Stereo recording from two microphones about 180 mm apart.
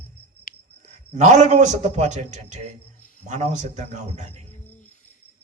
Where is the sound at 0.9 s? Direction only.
40° right (ahead or behind).